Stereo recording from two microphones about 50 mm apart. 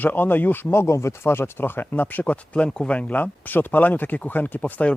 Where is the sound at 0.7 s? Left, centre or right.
Left.